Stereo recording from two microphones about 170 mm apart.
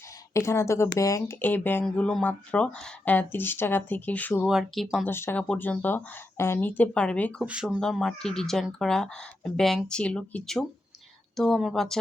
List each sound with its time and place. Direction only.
0.3 s speech: 15° left (ahead or behind)
4.4 s speech: centre (ahead or behind)
5.0 s speech: 15° left (ahead or behind)
7.4 s speech: 5° right (ahead or behind)